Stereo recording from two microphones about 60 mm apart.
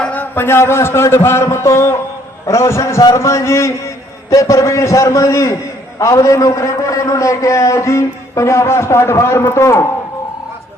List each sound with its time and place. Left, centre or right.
0.1 s a man's voice: left
4.3 s a man's voice: left